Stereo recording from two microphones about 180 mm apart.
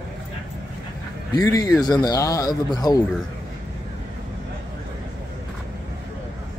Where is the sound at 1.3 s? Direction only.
15° left (ahead or behind).